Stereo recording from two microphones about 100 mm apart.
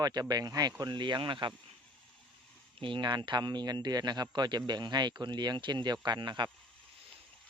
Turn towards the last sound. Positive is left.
turn(degrees=-50)  # may be behind; listen again after turning